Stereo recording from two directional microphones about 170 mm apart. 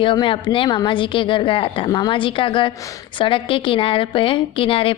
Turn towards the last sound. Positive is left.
turn(degrees=30)  # may be behind; listen again after turning